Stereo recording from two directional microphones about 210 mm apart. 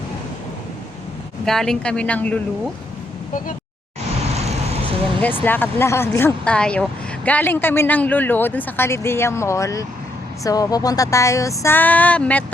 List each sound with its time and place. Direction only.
1.5 s speech: centre (ahead or behind)
4.4 s vehicle: 30° right (ahead or behind)
5.2 s speech: 10° left (ahead or behind)